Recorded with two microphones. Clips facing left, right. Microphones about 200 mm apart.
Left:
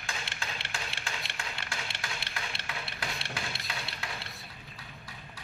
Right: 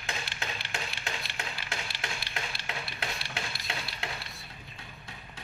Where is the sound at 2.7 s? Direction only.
25° right (ahead or behind).